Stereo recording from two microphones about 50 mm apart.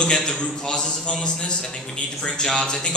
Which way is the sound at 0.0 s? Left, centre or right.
Centre.